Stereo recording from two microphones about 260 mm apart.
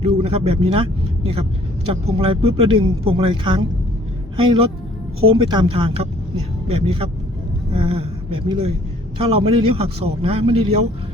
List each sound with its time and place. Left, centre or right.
0.1 s a man's voice: right
1.9 s a man's voice: right